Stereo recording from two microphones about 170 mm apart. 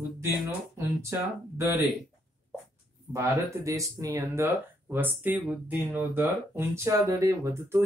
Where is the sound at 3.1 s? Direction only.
15° right (ahead or behind).